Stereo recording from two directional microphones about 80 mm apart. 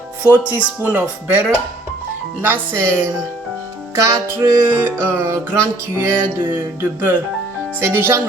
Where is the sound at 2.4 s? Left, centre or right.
Right.